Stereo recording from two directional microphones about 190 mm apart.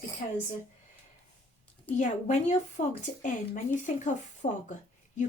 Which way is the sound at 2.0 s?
40° left (ahead or behind).